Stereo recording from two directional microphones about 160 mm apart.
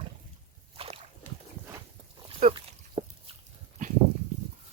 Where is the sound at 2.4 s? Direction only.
55° right (ahead or behind).